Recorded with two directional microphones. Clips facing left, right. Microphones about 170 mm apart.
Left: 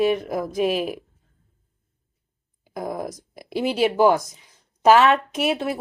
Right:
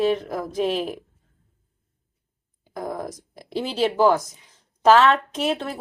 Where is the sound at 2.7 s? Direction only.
10° left (ahead or behind).